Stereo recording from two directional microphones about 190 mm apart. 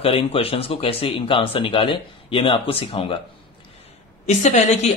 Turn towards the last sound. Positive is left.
turn(degrees=35)  # may be behind; listen again after turning